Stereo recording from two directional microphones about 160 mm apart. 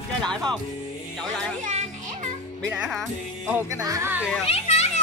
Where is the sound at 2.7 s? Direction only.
5° right (ahead or behind).